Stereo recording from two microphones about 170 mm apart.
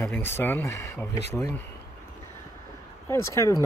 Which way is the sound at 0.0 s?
15° left (ahead or behind).